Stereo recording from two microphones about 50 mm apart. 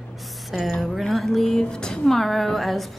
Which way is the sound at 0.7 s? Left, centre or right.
Centre.